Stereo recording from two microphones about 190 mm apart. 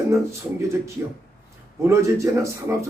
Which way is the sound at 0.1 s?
15° right (ahead or behind).